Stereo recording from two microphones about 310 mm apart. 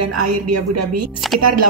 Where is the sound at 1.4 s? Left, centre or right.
Right.